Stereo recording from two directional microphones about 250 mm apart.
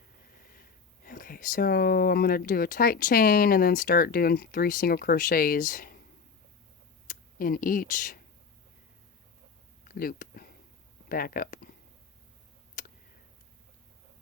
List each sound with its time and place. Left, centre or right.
0.5 s speech: left
7.1 s speech: left
9.9 s a sound: left
11.1 s speech: left
12.8 s tick: left